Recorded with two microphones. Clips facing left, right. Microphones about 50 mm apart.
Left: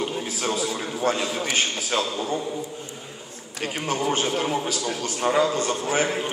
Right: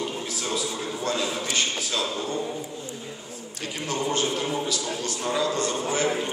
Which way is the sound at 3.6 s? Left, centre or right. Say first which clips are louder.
Left 3 dB; left.